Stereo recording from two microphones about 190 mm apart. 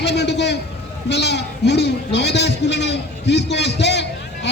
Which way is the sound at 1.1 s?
65° left (ahead or behind).